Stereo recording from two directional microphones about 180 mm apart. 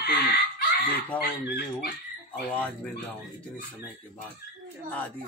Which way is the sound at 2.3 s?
10° left (ahead or behind).